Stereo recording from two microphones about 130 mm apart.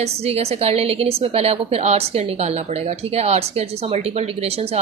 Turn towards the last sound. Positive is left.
turn(degrees=-50)  # may be behind; listen again after turning